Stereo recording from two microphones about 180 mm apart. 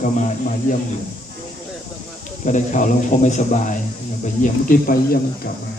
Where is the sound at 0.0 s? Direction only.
45° left (ahead or behind).